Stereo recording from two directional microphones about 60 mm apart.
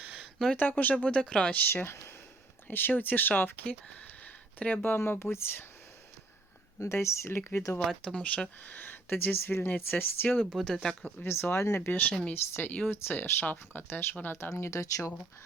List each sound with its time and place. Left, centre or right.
0.2 s a sound: centre
0.5 s speech: left
1.5 s speech: left
4.8 s speech: left
6.7 s speech: left
7.9 s speech: centre
8.6 s speech: left
10.5 s speech: centre
11.0 s speech: left
11.9 s speech: left
14.5 s speech: left